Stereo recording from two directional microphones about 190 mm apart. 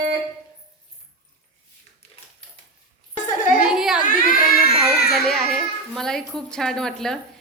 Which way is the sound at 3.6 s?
5° right (ahead or behind).